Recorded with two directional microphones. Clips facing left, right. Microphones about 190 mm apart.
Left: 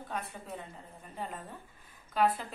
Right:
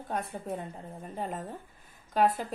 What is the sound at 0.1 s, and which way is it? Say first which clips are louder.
A woman's voice: right 7 dB; 45° right (ahead or behind).